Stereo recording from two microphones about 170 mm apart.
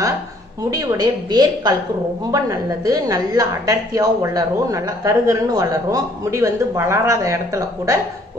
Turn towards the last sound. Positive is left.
turn(degrees=-15)  # may be behind; listen again after turning